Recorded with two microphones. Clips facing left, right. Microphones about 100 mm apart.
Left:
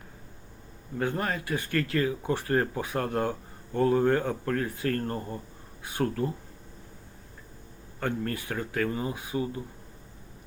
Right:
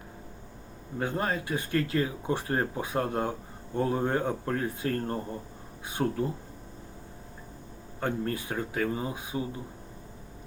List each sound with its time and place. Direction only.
0.9 s speech: 20° right (ahead or behind)
8.0 s speech: 20° right (ahead or behind)